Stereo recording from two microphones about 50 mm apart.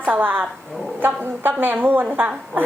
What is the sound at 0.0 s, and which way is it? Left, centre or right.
A woman's voice, right.